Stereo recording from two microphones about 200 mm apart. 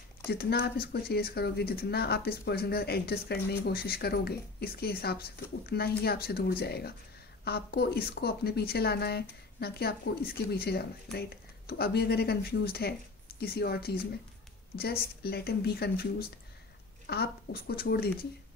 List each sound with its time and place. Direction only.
0.3 s speech: 50° left (ahead or behind)